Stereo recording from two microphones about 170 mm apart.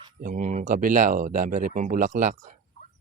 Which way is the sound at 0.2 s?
50° right (ahead or behind).